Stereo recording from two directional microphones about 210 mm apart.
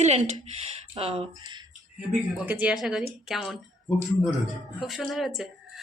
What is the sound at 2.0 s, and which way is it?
Speech, 5° right (ahead or behind).